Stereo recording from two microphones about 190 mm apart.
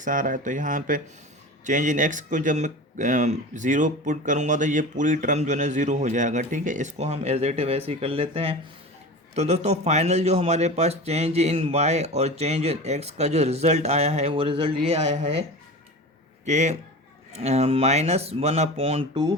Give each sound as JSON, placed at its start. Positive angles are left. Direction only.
{"t": 0.0, "sound": "speech", "side_deg": -45}
{"t": 16.5, "sound": "speech", "side_deg": -40}